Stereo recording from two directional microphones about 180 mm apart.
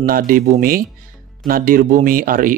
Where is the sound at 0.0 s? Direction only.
55° right (ahead or behind).